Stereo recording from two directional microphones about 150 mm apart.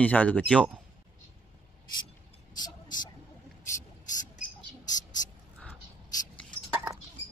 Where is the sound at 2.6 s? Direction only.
25° left (ahead or behind).